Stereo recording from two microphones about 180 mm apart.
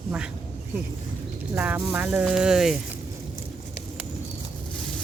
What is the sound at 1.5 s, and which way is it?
Speech, 10° right (ahead or behind).